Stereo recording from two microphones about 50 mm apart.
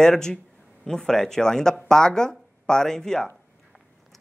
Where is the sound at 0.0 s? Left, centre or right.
Centre.